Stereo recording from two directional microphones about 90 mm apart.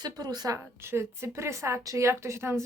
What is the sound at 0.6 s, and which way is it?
A woman's voice, 30° right (ahead or behind).